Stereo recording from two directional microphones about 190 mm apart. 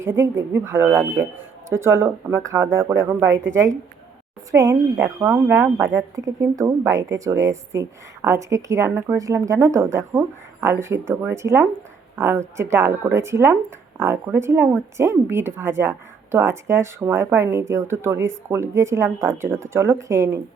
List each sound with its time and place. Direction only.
0.0 s speech: 15° right (ahead or behind)
4.5 s speech: 15° right (ahead or behind)